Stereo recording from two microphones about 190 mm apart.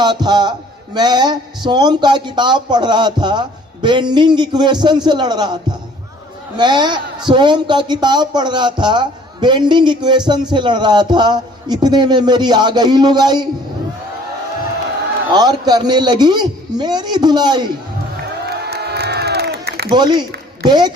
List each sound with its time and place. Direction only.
0.0 s a man's voice: 20° right (ahead or behind)
6.6 s a man's voice: 25° right (ahead or behind)
15.3 s a man's voice: 20° right (ahead or behind)
18.4 s crowd: 60° right (ahead or behind)
19.9 s a man's voice: 25° right (ahead or behind)